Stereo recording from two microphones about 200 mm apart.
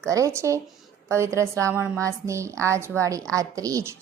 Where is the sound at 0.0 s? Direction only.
15° right (ahead or behind).